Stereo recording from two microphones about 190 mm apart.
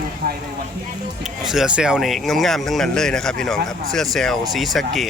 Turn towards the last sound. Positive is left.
turn(degrees=0)  # may be behind; listen again after turning